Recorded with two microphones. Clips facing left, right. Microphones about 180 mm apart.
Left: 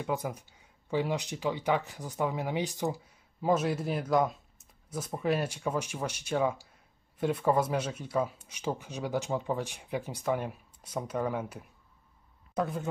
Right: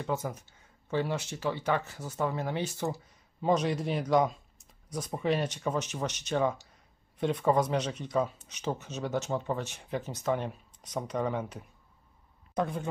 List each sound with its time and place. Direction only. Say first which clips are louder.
0.0 s speech: even; 10° left (ahead or behind)